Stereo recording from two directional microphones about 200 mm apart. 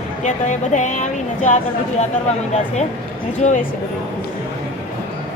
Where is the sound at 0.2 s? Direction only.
35° left (ahead or behind).